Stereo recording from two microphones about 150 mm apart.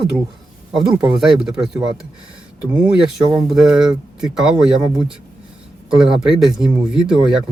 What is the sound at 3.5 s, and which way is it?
Speech, 5° right (ahead or behind).